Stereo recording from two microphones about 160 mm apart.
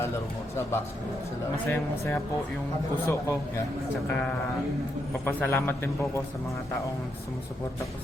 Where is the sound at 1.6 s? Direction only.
15° left (ahead or behind).